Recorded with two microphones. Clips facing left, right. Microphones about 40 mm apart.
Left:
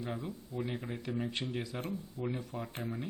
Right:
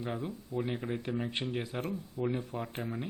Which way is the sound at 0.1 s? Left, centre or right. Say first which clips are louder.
Right 3 dB; centre.